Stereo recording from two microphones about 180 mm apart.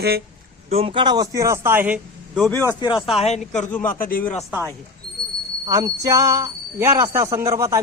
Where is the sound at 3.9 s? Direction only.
50° left (ahead or behind).